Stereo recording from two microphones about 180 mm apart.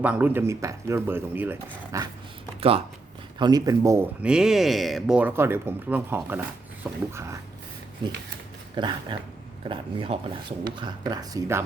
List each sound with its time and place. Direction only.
0.0 s speech: 10° right (ahead or behind)
2.6 s speech: 30° right (ahead or behind); by 7.3 s 15° right (ahead or behind)
8.7 s speech: 25° right (ahead or behind)